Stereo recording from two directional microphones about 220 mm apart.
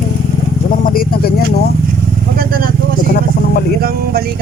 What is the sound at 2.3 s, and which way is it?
Speech, 40° right (ahead or behind).